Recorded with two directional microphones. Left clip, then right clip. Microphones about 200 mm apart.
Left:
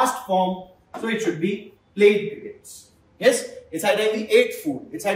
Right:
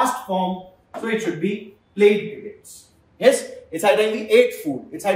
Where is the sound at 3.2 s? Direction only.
25° right (ahead or behind).